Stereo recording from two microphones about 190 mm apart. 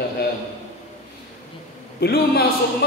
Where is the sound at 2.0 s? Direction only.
60° left (ahead or behind).